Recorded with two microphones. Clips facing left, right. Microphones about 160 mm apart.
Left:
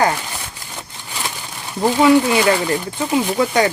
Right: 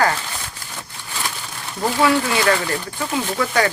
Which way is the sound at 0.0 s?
15° left (ahead or behind).